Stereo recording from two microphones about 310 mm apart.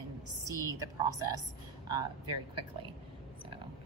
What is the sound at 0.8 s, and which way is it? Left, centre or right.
Speech, centre.